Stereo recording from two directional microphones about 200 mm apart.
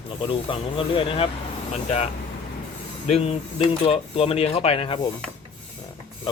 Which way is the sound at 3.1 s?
30° left (ahead or behind).